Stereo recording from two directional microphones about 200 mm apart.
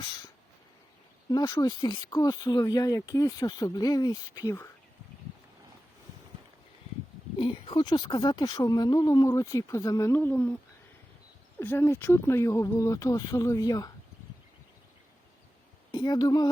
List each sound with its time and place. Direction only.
1.3 s speech: 20° left (ahead or behind)
7.3 s speech: 25° left (ahead or behind); by 10.6 s 10° left (ahead or behind)
11.6 s speech: 10° left (ahead or behind)
15.9 s a woman's voice: 20° left (ahead or behind)